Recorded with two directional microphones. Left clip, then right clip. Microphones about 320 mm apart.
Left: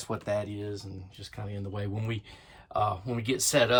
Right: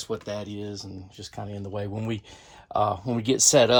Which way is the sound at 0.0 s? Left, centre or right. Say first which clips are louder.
Even; centre.